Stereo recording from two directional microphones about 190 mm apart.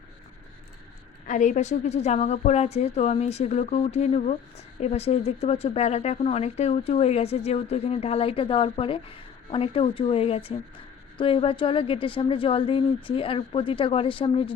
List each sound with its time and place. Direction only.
1.3 s a woman's voice: 40° left (ahead or behind)